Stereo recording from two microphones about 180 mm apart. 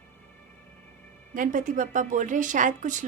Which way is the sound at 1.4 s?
45° right (ahead or behind).